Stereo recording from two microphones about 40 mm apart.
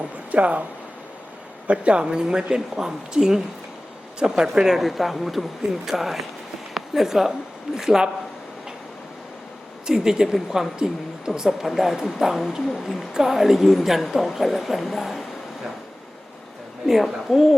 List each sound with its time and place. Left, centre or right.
0.3 s speech: right
1.6 s speech: right
2.0 s a woman's voice: centre
9.8 s a woman's voice: centre
13.1 s a woman's voice: centre
16.8 s a woman's voice: centre